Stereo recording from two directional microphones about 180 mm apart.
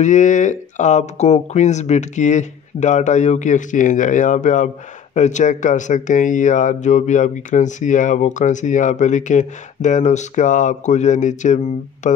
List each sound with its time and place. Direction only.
0.0 s speech: 45° left (ahead or behind)